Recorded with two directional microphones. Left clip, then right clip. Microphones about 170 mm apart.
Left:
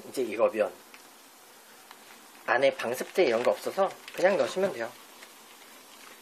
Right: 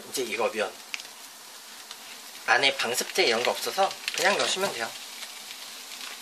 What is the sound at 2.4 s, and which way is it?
Speech, 25° left (ahead or behind).